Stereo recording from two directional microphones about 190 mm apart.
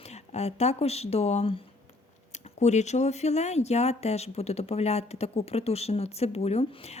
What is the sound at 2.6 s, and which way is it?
Speech, 35° left (ahead or behind).